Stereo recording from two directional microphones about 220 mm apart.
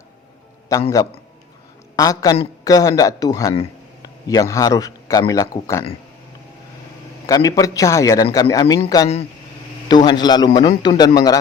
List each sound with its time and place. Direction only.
0.7 s a man's voice: 15° left (ahead or behind)
7.3 s a man's voice: 15° left (ahead or behind)